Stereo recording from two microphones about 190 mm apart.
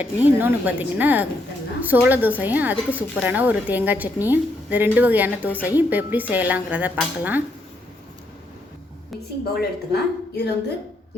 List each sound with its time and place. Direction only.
0.0 s a woman's voice: 10° right (ahead or behind)
9.6 s speech: 60° left (ahead or behind)